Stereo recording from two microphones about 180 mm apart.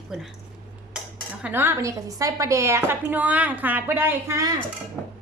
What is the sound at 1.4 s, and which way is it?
A woman's voice, 10° right (ahead or behind).